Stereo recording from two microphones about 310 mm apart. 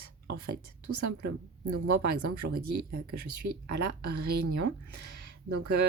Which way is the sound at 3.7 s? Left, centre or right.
Right.